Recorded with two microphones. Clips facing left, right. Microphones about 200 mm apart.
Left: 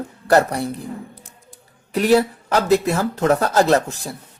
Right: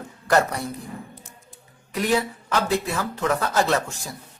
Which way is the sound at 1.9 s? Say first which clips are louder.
Left 7 dB; 35° left (ahead or behind).